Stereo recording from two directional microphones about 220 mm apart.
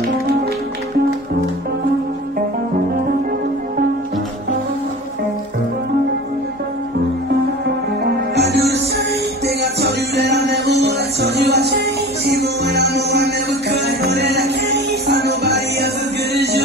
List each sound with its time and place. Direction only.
8.4 s music: 50° right (ahead or behind)